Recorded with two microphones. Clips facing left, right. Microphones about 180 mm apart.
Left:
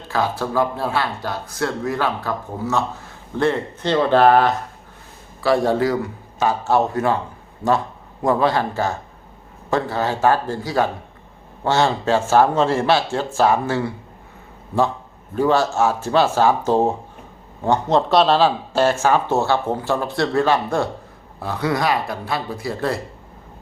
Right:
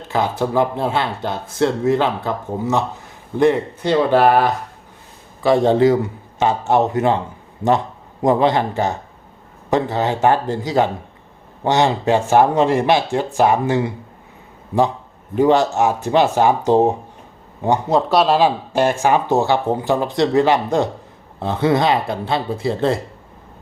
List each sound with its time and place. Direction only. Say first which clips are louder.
0.1 s a man's voice: right 3 dB; 20° right (ahead or behind)
8.2 s a man's voice: right 3 dB; 20° right (ahead or behind)
15.4 s a man's voice: right 3 dB; 20° right (ahead or behind)